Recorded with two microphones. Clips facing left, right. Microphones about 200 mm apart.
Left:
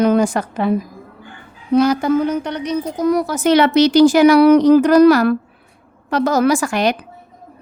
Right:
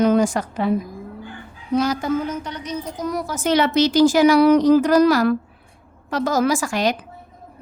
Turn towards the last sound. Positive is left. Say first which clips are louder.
# left 4 dB
turn(degrees=65)  # may be behind; listen again after turning